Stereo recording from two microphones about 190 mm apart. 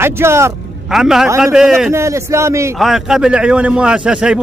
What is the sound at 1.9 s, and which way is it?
Speech, 15° right (ahead or behind).